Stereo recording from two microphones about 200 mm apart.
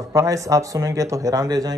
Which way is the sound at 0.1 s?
15° right (ahead or behind).